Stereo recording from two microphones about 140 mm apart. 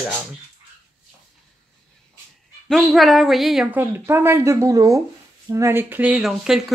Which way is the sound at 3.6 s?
15° right (ahead or behind).